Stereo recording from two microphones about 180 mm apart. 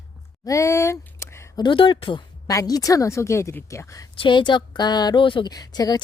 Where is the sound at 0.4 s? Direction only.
15° left (ahead or behind).